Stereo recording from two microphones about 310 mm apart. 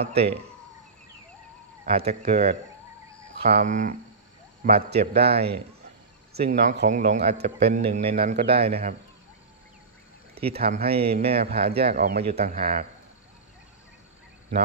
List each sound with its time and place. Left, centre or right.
0.0 s speech: centre
1.9 s speech: centre
5.1 s speech: centre
6.5 s speech: right
10.4 s speech: right